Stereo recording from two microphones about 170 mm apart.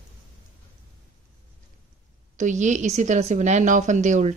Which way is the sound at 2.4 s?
45° right (ahead or behind).